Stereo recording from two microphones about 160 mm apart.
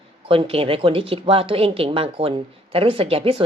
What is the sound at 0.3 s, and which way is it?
A woman's voice, 35° right (ahead or behind).